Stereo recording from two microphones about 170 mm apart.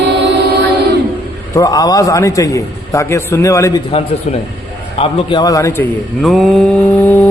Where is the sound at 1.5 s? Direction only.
20° left (ahead or behind).